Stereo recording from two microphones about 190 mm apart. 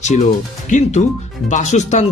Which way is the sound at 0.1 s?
40° left (ahead or behind).